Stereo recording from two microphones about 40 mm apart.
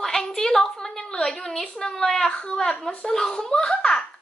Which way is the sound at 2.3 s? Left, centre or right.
Left.